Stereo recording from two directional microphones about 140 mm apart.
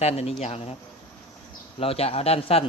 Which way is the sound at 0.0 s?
50° left (ahead or behind).